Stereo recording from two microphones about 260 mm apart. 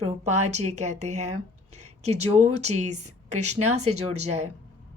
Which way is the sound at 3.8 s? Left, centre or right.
Right.